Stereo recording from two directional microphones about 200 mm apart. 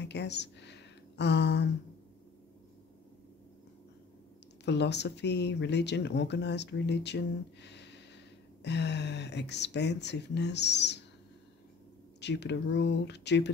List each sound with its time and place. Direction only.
0.0 s speech: 60° left (ahead or behind)
4.6 s speech: 60° left (ahead or behind)
12.2 s speech: 60° left (ahead or behind)